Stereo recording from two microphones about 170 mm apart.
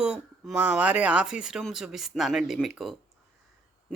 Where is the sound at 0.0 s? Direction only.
5° right (ahead or behind).